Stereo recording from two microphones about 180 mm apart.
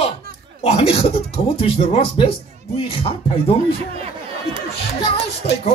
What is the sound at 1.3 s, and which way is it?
Speech, 30° left (ahead or behind).